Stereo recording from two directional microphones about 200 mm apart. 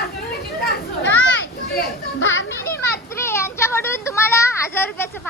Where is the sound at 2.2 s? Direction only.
75° left (ahead or behind).